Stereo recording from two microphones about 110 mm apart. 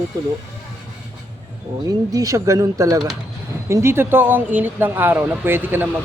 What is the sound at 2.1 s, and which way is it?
Speech, 30° right (ahead or behind).